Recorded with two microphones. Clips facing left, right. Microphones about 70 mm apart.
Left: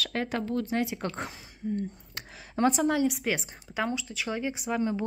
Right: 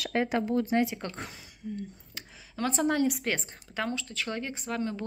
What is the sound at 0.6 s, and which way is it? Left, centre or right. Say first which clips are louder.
Speech: right 3 dB; centre.